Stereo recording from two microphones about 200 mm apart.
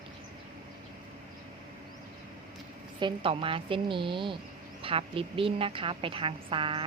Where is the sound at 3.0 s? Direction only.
25° right (ahead or behind).